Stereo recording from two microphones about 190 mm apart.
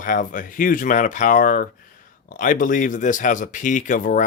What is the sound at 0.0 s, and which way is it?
Speech, 45° left (ahead or behind).